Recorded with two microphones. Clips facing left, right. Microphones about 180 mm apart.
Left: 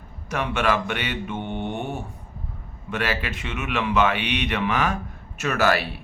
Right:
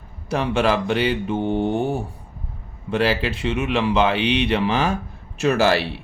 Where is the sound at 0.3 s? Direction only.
30° right (ahead or behind).